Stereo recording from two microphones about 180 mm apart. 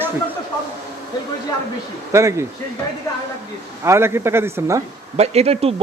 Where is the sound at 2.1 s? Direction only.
15° right (ahead or behind).